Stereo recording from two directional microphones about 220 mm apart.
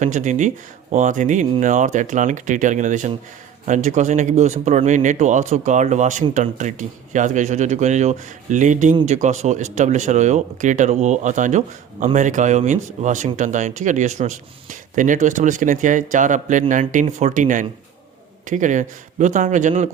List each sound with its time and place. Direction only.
0.0 s speech: 35° right (ahead or behind)